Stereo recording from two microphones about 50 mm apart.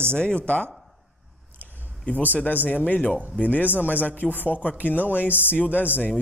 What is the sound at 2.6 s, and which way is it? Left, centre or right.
Speech, left.